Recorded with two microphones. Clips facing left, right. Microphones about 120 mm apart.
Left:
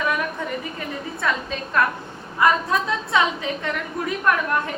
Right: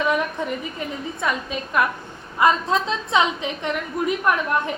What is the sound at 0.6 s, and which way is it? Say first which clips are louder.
A woman's voice: right 1 dB; 20° right (ahead or behind).